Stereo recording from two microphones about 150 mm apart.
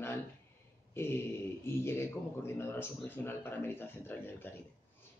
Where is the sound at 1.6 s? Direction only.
15° left (ahead or behind).